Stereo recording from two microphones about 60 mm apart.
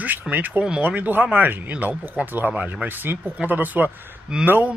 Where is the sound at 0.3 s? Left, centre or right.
Right.